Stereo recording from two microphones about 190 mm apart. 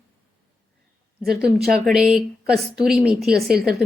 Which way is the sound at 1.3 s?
5° right (ahead or behind).